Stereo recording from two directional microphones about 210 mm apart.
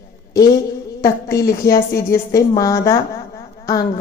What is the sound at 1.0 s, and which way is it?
A woman's voice, 15° left (ahead or behind).